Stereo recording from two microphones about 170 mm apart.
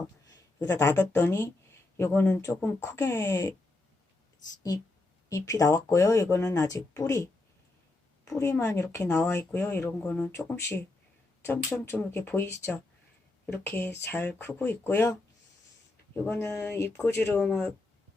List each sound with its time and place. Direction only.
0.3 s speech: 20° left (ahead or behind)
5.3 s speech: 20° left (ahead or behind)
16.2 s speech: 10° left (ahead or behind)